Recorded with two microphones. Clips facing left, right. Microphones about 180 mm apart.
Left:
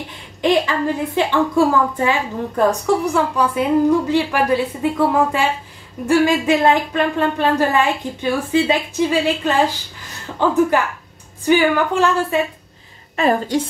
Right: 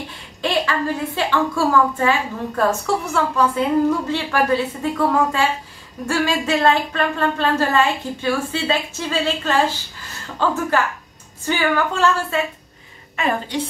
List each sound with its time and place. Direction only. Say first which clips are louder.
0.4 s speech: left 4 dB; 20° left (ahead or behind)
13.1 s a woman's voice: left 5 dB; 35° left (ahead or behind)